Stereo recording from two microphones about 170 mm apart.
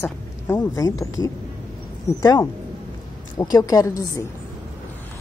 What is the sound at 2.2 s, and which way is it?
A woman's voice, 20° left (ahead or behind).